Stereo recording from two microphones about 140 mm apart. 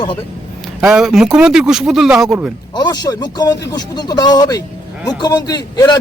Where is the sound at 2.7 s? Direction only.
30° left (ahead or behind).